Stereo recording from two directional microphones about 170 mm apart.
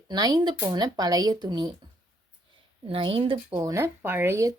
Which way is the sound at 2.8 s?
30° right (ahead or behind).